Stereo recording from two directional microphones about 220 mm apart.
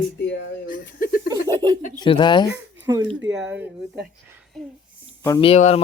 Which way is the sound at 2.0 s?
20° left (ahead or behind).